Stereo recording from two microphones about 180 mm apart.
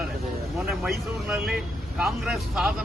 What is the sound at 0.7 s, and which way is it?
Speech, centre (ahead or behind).